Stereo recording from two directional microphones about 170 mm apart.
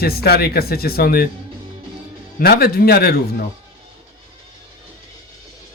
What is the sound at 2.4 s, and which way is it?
Speech, 65° left (ahead or behind).